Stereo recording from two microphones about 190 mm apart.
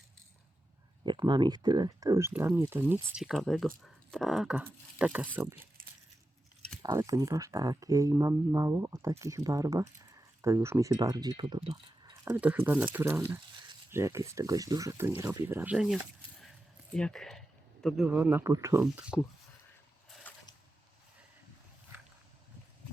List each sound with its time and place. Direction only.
1.0 s speech: 25° right (ahead or behind)
6.8 s speech: 15° right (ahead or behind)
12.3 s speech: 5° right (ahead or behind)
16.4 s a sound: centre (ahead or behind)
17.8 s speech: centre (ahead or behind)
20.1 s a sound: centre (ahead or behind)